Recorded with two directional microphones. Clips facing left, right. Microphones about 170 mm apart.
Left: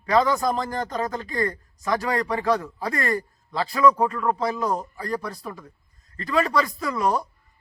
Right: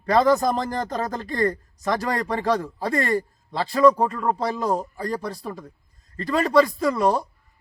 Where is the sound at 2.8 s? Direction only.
30° right (ahead or behind).